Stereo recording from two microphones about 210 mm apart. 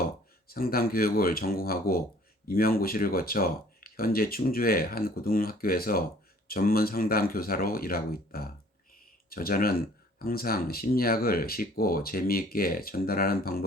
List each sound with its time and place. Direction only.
0.4 s speech: 45° left (ahead or behind)